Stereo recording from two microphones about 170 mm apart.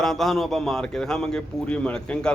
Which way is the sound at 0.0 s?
Centre (ahead or behind).